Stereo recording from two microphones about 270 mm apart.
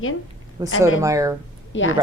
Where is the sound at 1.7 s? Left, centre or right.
Left.